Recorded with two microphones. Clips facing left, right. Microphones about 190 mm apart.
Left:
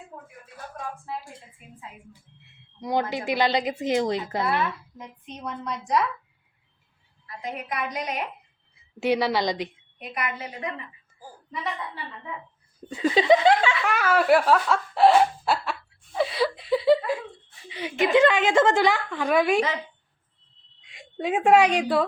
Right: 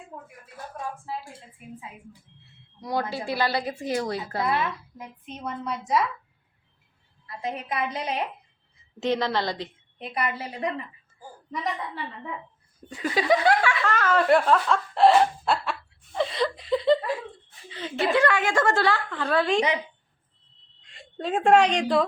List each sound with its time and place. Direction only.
0.1 s a sound: 15° right (ahead or behind)
2.4 s a woman's voice: 20° left (ahead or behind)
4.4 s a woman's voice: 15° right (ahead or behind)
7.3 s a woman's voice: 25° right (ahead or behind)
8.7 s a woman's voice: 10° left (ahead or behind)
10.0 s a woman's voice: 30° right (ahead or behind)
13.0 s a woman's voice: 20° left (ahead or behind)
20.8 s a woman's voice: 10° left (ahead or behind)